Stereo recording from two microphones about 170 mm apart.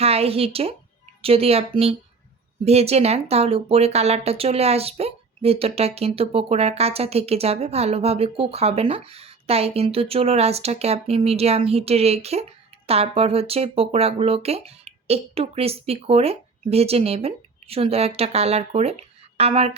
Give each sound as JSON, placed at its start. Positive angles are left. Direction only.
{"t": 0.0, "sound": "speech", "side_deg": -35}